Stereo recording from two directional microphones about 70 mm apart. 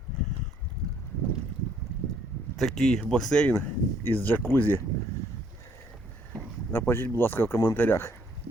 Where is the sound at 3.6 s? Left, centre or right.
Left.